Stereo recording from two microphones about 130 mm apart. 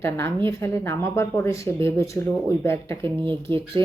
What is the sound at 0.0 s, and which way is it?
A woman's voice, 20° left (ahead or behind).